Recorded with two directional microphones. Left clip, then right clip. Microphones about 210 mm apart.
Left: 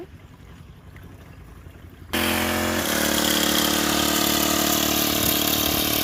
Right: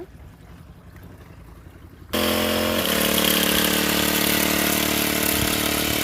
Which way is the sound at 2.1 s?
45° right (ahead or behind).